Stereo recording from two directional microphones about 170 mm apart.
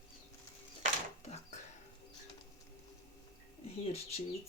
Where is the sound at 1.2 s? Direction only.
40° left (ahead or behind).